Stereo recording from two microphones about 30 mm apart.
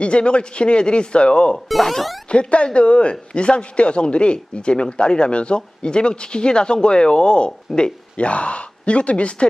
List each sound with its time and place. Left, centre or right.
0.0 s speech: left
1.8 s speech: centre
2.3 s speech: left
8.1 s speech: left